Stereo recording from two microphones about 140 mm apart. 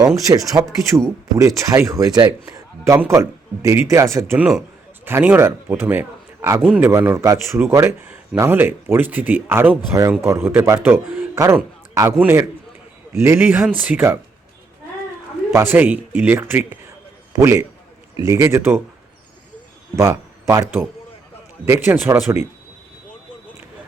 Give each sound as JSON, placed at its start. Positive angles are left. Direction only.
{"t": 0.0, "sound": "a man's voice", "side_deg": -25}
{"t": 4.4, "sound": "a man's voice", "side_deg": -5}
{"t": 13.2, "sound": "speech", "side_deg": -15}
{"t": 15.5, "sound": "a man's voice", "side_deg": -15}
{"t": 20.5, "sound": "a man's voice", "side_deg": -25}